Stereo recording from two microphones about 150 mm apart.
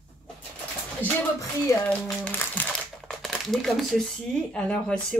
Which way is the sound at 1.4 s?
20° left (ahead or behind).